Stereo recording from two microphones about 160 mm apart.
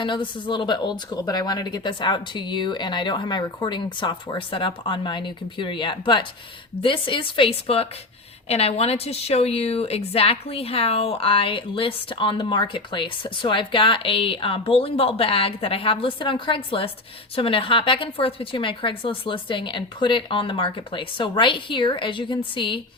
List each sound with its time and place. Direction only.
0.0 s a woman's voice: 30° left (ahead or behind)